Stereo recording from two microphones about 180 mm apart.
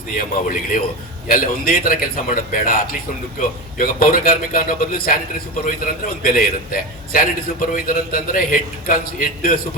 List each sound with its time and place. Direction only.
0.1 s a man's voice: 50° left (ahead or behind)
3.8 s a man's voice: 50° left (ahead or behind)